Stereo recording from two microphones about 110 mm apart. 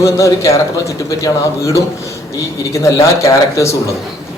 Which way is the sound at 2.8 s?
30° left (ahead or behind).